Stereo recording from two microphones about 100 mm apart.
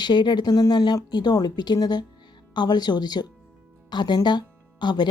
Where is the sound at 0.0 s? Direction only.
50° left (ahead or behind).